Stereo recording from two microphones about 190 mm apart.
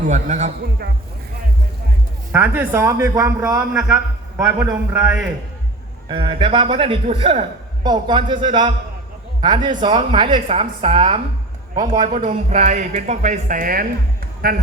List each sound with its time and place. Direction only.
0.1 s speech: 40° right (ahead or behind)
2.3 s speech: 10° right (ahead or behind)
3.7 s a man's voice: centre (ahead or behind)
3.9 s a man's voice: 15° right (ahead or behind)
4.9 s a man's voice: 5° right (ahead or behind)
6.1 s a woman's voice: 25° right (ahead or behind)
12.0 s speech: 40° right (ahead or behind)